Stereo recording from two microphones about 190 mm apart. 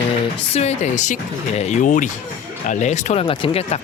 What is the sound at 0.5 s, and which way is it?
Speech, 35° left (ahead or behind).